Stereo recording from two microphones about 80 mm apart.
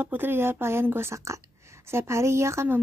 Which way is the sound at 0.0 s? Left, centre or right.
Right.